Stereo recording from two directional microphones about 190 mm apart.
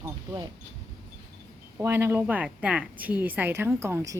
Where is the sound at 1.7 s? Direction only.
10° right (ahead or behind).